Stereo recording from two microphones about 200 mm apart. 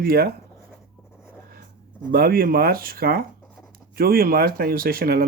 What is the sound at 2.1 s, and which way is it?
Speech, 50° right (ahead or behind).